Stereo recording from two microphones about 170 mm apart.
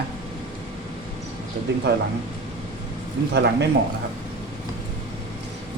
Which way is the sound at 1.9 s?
80° right.